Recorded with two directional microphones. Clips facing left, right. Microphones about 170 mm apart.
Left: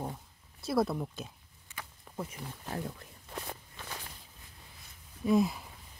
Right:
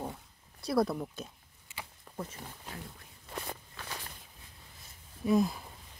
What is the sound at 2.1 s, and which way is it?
Speech, 10° left (ahead or behind).